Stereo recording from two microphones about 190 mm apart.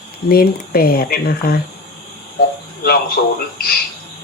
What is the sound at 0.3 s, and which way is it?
Speech, 50° left (ahead or behind).